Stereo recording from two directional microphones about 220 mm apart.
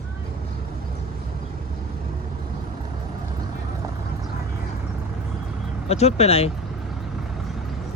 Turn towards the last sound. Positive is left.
turn(degrees=25)  # may be behind; listen again after turning